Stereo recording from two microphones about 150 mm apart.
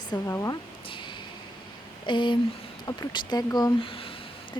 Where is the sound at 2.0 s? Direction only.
30° left (ahead or behind).